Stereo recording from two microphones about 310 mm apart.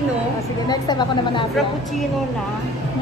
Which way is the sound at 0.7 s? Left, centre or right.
Centre.